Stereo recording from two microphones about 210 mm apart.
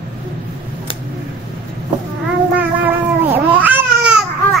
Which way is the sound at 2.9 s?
10° right (ahead or behind).